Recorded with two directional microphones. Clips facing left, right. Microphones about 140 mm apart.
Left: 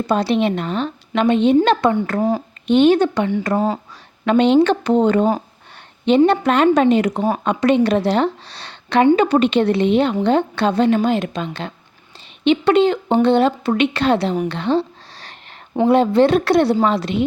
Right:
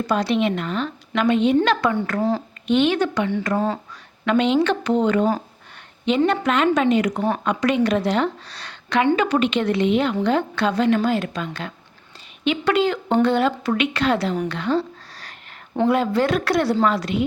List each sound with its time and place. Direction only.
0.1 s a woman's voice: 30° left (ahead or behind)
4.3 s a woman's voice: 35° left (ahead or behind)
7.2 s speech: 15° left (ahead or behind)
7.4 s a woman's voice: 30° left (ahead or behind)
14.4 s a sound: 25° left (ahead or behind)
15.9 s speech: 25° left (ahead or behind)